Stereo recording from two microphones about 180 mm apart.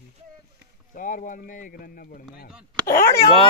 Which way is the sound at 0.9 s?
45° left (ahead or behind).